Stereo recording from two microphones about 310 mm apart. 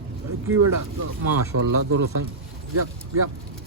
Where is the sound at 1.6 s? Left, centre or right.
Right.